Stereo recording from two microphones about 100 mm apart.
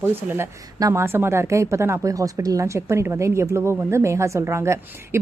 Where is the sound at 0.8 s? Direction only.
30° right (ahead or behind).